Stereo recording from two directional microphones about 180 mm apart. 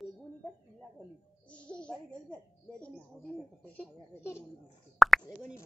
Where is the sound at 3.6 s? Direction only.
10° left (ahead or behind).